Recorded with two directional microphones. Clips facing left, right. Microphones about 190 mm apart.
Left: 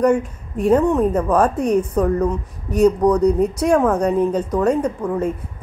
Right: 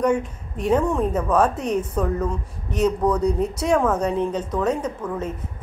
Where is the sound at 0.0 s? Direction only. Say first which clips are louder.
Left 4 dB; 10° left (ahead or behind).